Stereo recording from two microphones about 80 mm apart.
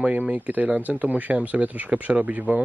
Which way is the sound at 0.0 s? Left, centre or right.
Centre.